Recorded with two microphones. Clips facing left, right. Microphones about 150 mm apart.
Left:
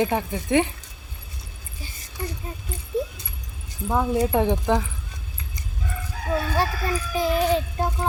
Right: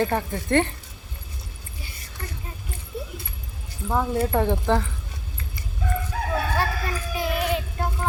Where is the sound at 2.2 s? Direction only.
15° left (ahead or behind).